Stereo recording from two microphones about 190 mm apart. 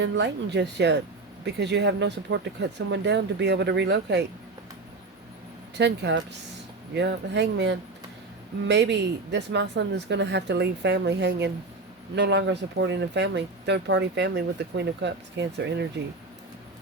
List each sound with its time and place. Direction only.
0.0 s speech: 65° right (ahead or behind)
5.7 s speech: 65° right (ahead or behind)